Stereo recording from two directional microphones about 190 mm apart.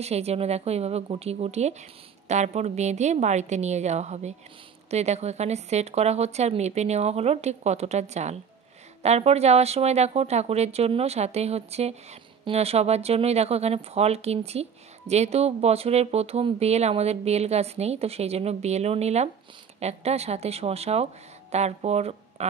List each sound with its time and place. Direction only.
0.0 s speech: 35° right (ahead or behind)